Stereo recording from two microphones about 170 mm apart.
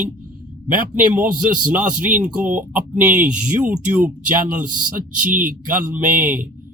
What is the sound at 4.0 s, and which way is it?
Speech, 55° right (ahead or behind).